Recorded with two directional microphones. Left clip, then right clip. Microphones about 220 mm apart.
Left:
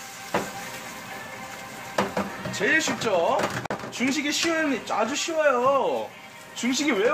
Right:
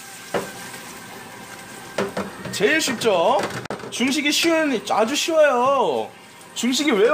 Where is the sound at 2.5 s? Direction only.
45° right (ahead or behind).